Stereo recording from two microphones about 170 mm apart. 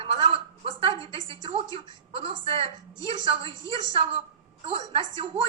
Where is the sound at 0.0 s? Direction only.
35° right (ahead or behind).